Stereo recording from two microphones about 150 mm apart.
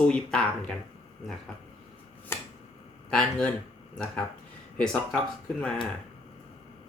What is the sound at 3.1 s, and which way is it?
Speech, 5° left (ahead or behind).